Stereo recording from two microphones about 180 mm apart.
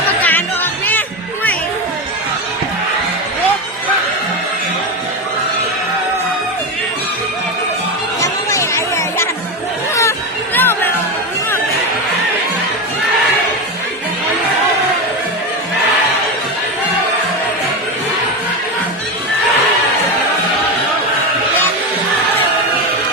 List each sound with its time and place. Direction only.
0.2 s music: 10° left (ahead or behind)
8.2 s music: 15° left (ahead or behind)